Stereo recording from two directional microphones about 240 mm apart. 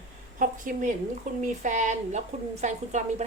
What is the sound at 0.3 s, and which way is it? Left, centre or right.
A woman's voice, right.